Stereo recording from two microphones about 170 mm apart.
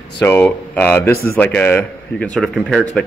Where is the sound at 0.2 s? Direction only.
10° left (ahead or behind).